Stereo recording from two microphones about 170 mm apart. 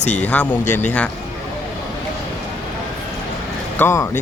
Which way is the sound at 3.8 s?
15° left (ahead or behind).